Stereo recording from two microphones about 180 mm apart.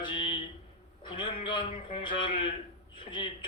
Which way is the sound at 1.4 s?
25° left (ahead or behind).